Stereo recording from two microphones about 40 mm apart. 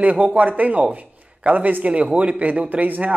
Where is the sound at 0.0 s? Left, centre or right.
Right.